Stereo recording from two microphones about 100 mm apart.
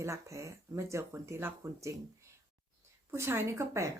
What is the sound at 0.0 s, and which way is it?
A woman's voice, 30° right (ahead or behind).